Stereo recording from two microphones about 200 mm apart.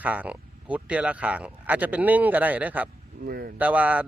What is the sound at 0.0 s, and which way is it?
Speech, 5° right (ahead or behind).